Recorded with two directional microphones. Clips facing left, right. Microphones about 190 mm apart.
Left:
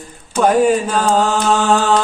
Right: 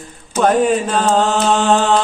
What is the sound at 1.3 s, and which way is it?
Mantra, 20° right (ahead or behind).